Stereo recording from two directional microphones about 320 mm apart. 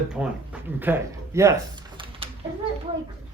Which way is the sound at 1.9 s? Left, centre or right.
Centre.